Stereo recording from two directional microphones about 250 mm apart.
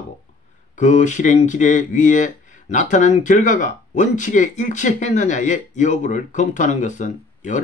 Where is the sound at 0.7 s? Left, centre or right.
Left.